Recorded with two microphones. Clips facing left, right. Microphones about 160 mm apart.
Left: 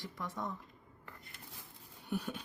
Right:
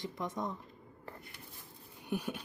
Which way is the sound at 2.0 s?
15° right (ahead or behind).